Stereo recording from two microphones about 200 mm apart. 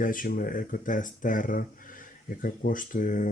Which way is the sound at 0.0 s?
45° left (ahead or behind).